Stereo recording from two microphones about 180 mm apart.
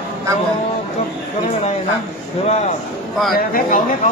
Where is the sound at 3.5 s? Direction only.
55° left (ahead or behind).